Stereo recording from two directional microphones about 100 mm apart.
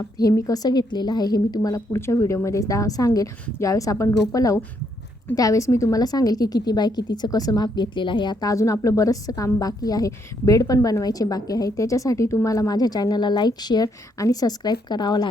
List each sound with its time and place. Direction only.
0.0 s a woman's voice: 35° left (ahead or behind)